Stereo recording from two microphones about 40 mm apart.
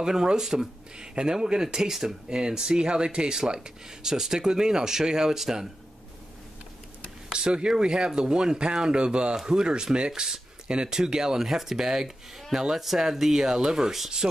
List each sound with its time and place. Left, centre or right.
0.0 s speech: centre
0.9 s speech: right
7.3 s speech: right